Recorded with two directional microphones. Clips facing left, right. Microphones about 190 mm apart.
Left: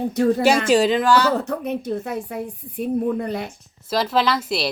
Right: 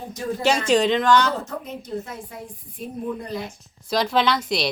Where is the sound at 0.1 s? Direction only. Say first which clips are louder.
Left 8 dB; 65° left (ahead or behind).